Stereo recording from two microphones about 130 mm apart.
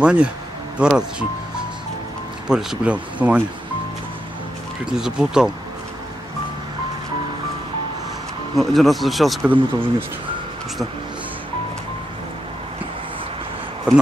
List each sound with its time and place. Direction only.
0.0 s speech: 10° right (ahead or behind)
2.4 s speech: 5° right (ahead or behind)
4.9 s speech: 5° right (ahead or behind)
8.5 s speech: centre (ahead or behind)
9.5 s speech: 15° right (ahead or behind)